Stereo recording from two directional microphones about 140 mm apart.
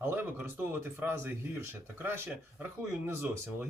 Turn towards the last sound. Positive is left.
turn(degrees=-15)  # may be behind; listen again after turning